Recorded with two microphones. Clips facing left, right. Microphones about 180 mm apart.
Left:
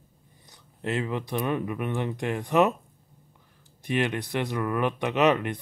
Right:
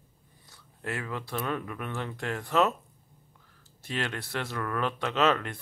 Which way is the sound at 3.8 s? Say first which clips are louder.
Left 7 dB; 15° left (ahead or behind).